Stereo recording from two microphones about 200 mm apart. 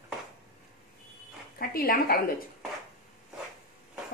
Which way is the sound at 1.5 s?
45° left (ahead or behind).